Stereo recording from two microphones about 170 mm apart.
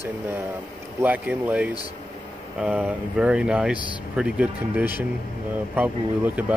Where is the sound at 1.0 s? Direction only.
10° right (ahead or behind).